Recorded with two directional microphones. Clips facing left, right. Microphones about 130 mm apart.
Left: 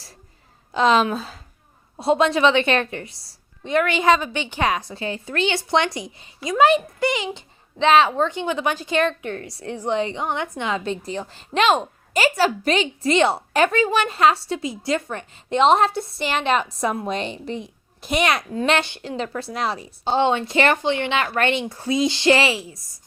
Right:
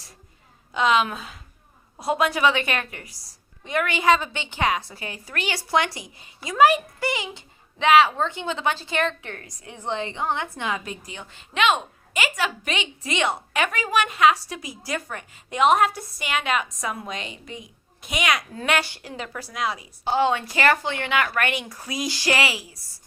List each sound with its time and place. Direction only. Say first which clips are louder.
0.7 s a woman's voice: left 4 dB; 35° left (ahead or behind)
4.5 s a woman's voice: left 1 dB; 15° right (ahead or behind)
4.8 s a woman's voice: left 8 dB; 25° left (ahead or behind)
18.5 s a woman's voice: left 4 dB; 25° left (ahead or behind)